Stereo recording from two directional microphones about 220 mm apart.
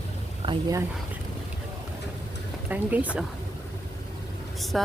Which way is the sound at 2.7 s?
5° right (ahead or behind).